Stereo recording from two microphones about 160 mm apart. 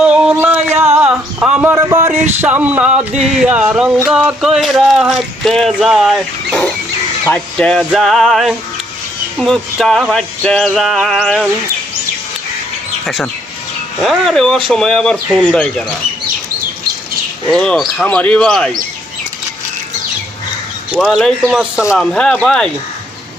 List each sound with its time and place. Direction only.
0.0 s a sound: 5° right (ahead or behind)
3.2 s speech: 5° right (ahead or behind)
14.0 s speech: centre (ahead or behind)
17.5 s speech: 5° left (ahead or behind)
21.0 s speech: centre (ahead or behind)
21.9 s speech: 5° left (ahead or behind)